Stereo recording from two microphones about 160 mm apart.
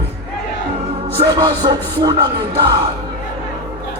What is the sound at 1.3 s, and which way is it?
Music, 25° right (ahead or behind).